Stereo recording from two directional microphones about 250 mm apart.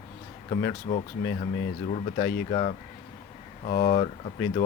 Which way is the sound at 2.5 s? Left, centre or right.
Left.